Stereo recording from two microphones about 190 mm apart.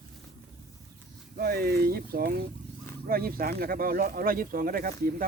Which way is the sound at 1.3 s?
55° right (ahead or behind).